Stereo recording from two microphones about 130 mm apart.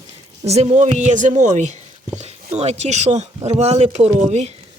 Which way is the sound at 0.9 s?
70° right (ahead or behind).